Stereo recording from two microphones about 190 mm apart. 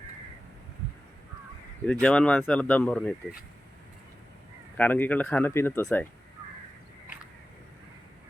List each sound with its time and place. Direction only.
1.8 s speech: 5° left (ahead or behind)
4.8 s speech: 10° left (ahead or behind)